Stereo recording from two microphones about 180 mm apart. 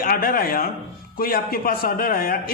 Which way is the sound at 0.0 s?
55° left (ahead or behind).